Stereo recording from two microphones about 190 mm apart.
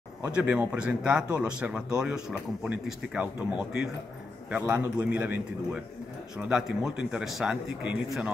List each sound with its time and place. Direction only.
0.3 s a man's voice: 5° right (ahead or behind)
6.3 s speech: 5° right (ahead or behind)